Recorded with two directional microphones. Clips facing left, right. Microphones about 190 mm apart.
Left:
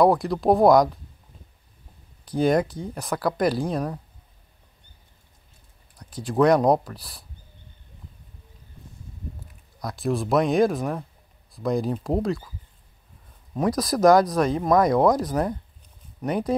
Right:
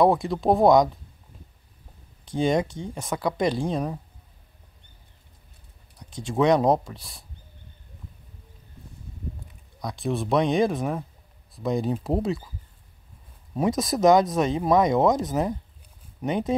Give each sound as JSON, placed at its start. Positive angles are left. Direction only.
{"t": 0.0, "sound": "speech", "side_deg": 0}
{"t": 2.2, "sound": "speech", "side_deg": 5}
{"t": 5.9, "sound": "speech", "side_deg": 0}
{"t": 9.8, "sound": "speech", "side_deg": 0}
{"t": 13.6, "sound": "speech", "side_deg": 0}